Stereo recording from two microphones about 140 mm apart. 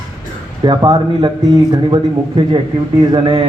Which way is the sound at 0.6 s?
30° right (ahead or behind).